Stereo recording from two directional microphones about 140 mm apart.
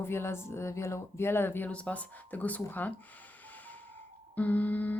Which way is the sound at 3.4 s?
10° left (ahead or behind).